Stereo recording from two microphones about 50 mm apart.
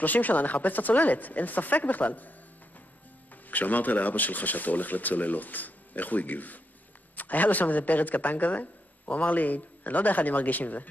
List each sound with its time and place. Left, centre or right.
0.0 s speech: left
3.4 s speech: left